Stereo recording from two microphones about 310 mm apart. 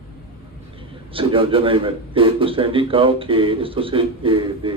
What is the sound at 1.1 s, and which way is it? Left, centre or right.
A man's voice, centre.